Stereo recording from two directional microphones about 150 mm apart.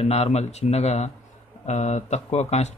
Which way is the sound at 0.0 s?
45° left (ahead or behind).